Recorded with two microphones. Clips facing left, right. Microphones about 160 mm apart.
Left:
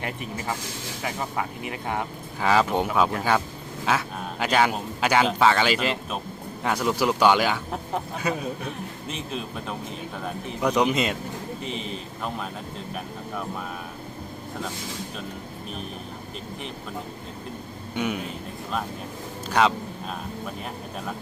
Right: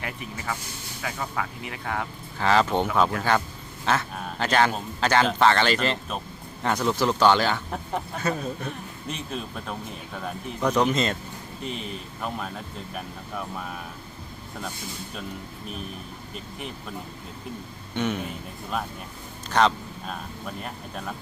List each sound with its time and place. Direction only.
1.0 s speech: 25° left (ahead or behind)
2.4 s speech: 10° left (ahead or behind)
11.6 s speech: centre (ahead or behind)
17.9 s speech: 10° left (ahead or behind)
19.5 s a sound: 5° left (ahead or behind)